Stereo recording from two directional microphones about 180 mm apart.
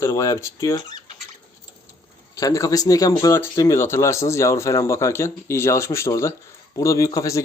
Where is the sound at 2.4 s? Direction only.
20° left (ahead or behind).